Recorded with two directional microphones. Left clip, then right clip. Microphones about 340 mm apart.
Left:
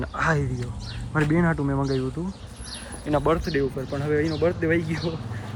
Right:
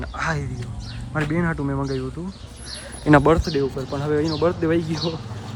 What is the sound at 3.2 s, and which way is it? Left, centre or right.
Speech, centre.